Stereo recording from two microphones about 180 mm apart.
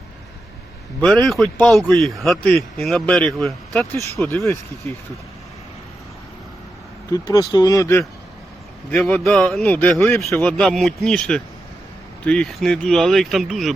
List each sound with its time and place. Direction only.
1.0 s a man's voice: centre (ahead or behind)
4.2 s speech: 10° left (ahead or behind)
7.1 s speech: 20° left (ahead or behind)
8.9 s a man's voice: 5° left (ahead or behind)